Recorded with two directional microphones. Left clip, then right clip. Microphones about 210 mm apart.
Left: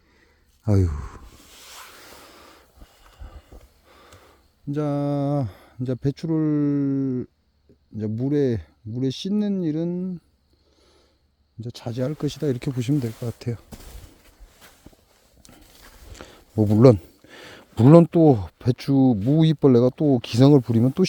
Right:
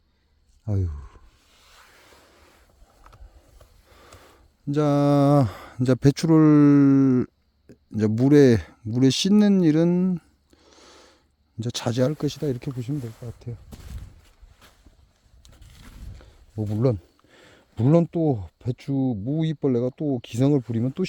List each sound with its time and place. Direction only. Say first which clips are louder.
0.6 s speech: left 9 dB; 35° left (ahead or behind)
1.5 s boat: left 10 dB; 60° left (ahead or behind)
3.9 s gasp: even; 5° right (ahead or behind)
4.7 s speech: right 5 dB; 20° right (ahead or behind); by 10.2 s 40° right (ahead or behind)
10.7 s a sound: right 9 dB; 35° right (ahead or behind)
11.6 s speech: right 6 dB; 35° right (ahead or behind)
12.1 s speech: even; centre (ahead or behind)
12.8 s speech: left 8 dB; 45° left (ahead or behind)
15.4 s a sound: left 3 dB; 10° left (ahead or behind)
16.1 s a sound: left 11 dB; 45° left (ahead or behind)
17.2 s speech: left 9 dB; 25° left (ahead or behind)